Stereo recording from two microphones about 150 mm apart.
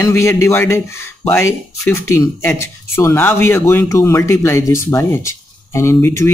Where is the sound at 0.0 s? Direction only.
20° left (ahead or behind).